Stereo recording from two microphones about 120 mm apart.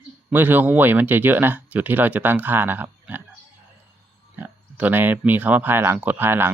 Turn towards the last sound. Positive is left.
turn(degrees=-15)  # may be behind; listen again after turning